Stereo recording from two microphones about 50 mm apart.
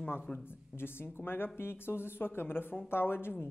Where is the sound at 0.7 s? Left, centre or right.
Left.